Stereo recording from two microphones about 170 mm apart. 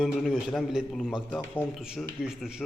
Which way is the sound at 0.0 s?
Centre (ahead or behind).